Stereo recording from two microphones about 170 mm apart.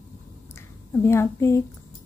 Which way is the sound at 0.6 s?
15° left (ahead or behind).